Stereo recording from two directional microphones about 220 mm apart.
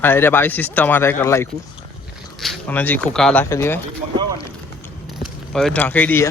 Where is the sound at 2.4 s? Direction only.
5° left (ahead or behind).